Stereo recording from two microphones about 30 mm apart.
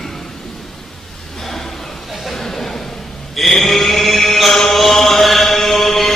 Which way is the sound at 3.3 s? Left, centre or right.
Centre.